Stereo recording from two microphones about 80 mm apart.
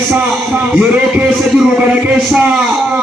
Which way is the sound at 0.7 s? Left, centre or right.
Centre.